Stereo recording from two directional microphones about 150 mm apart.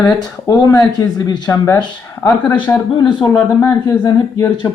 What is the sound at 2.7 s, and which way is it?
A man's voice, 20° left (ahead or behind).